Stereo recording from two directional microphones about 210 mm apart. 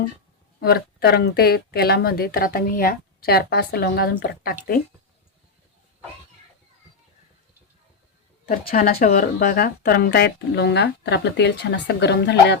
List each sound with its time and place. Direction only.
0.6 s speech: 50° left (ahead or behind)
8.4 s speech: 45° left (ahead or behind)